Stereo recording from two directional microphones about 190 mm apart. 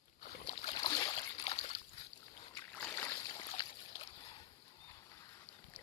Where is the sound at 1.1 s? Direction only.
30° left (ahead or behind).